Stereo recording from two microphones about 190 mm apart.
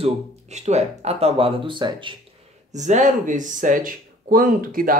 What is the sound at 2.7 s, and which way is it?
Speech, 40° right (ahead or behind).